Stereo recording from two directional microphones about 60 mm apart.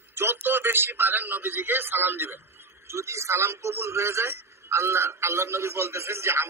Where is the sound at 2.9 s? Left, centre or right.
Right.